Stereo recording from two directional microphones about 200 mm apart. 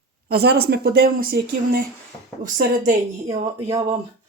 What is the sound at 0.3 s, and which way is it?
A woman's voice, 50° right (ahead or behind).